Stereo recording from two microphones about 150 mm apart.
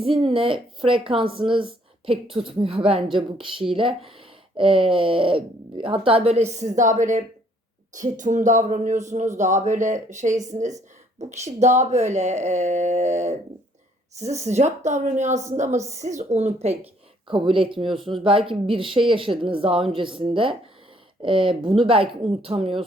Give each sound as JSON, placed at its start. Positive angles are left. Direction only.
{"t": 0.0, "sound": "speech", "side_deg": -35}
{"t": 17.2, "sound": "speech", "side_deg": -35}